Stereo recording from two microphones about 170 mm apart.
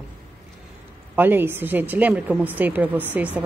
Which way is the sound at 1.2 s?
10° right (ahead or behind).